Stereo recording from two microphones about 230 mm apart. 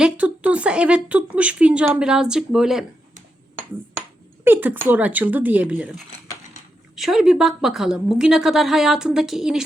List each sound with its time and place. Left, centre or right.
0.0 s a woman's voice: centre
4.4 s a woman's voice: centre